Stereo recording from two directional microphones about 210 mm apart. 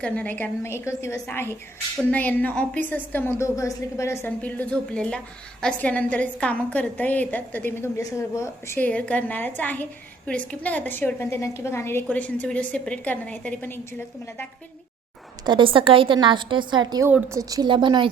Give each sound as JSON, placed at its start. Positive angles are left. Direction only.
{"t": 0.0, "sound": "a woman's voice", "side_deg": 5}
{"t": 15.4, "sound": "a woman's voice", "side_deg": -25}